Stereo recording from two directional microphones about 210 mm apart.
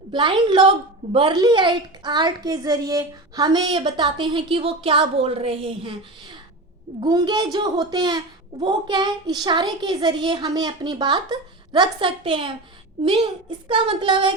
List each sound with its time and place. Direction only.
0.1 s a woman's voice: 25° right (ahead or behind)
7.0 s a woman's voice: 20° right (ahead or behind)